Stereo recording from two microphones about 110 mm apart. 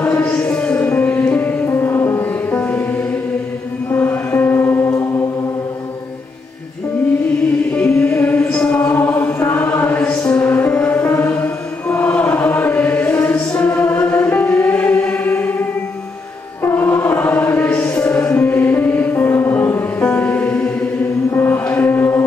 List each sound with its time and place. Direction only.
0.0 s music: 15° left (ahead or behind)
7.7 s chant: 10° left (ahead or behind)
16.6 s chant: 20° left (ahead or behind)
17.5 s music: 15° left (ahead or behind)